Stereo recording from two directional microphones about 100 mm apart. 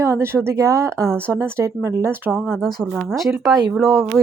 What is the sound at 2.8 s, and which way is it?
A woman's voice, 10° right (ahead or behind).